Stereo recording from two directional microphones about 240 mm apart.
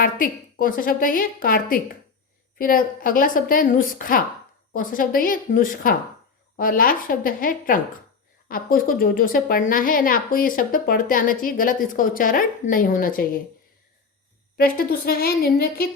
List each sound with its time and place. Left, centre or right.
0.0 s a woman's voice: left
14.5 s a woman's voice: left